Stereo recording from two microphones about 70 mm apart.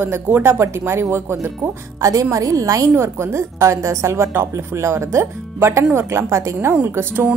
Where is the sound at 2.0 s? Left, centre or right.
Right.